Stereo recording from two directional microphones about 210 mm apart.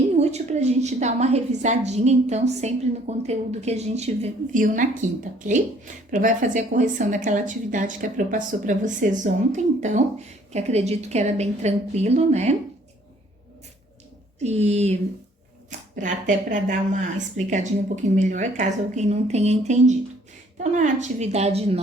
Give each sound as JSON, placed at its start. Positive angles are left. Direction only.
{"t": 0.2, "sound": "a woman's voice", "side_deg": -30}
{"t": 14.3, "sound": "a woman's voice", "side_deg": -30}
{"t": 16.0, "sound": "a woman's voice", "side_deg": -35}